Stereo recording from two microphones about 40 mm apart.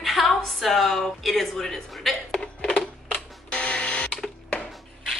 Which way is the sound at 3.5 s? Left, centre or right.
Left.